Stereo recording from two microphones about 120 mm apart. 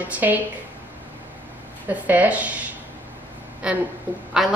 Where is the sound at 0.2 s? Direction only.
20° right (ahead or behind).